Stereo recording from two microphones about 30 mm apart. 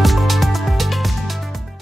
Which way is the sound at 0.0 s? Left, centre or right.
Centre.